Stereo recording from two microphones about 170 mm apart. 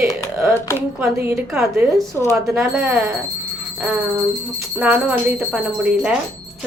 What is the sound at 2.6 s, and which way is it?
Speech, 10° right (ahead or behind).